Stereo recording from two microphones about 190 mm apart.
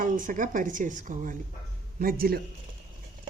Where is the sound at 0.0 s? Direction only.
45° right (ahead or behind).